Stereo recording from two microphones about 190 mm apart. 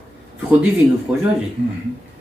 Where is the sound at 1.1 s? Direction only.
5° right (ahead or behind).